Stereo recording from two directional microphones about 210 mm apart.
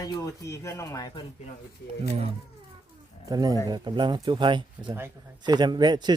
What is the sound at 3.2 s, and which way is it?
A man's voice, 20° right (ahead or behind).